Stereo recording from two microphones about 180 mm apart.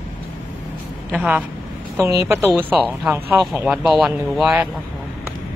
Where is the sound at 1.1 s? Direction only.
5° right (ahead or behind).